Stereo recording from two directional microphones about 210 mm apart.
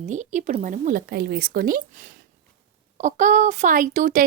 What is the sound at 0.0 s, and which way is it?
Speech, 35° right (ahead or behind).